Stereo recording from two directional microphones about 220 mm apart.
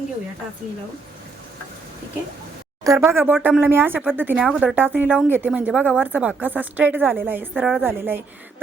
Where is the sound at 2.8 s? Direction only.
10° right (ahead or behind).